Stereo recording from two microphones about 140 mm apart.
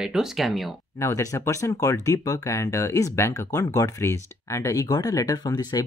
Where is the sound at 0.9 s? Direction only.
20° left (ahead or behind).